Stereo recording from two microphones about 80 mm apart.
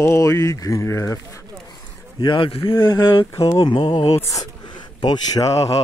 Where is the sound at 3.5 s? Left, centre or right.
Left.